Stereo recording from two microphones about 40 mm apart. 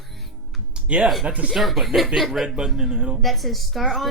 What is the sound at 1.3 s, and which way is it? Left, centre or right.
Speech, right.